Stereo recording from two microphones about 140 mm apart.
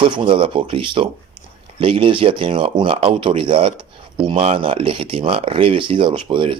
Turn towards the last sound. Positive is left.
turn(degrees=-35)  # may be behind; listen again after turning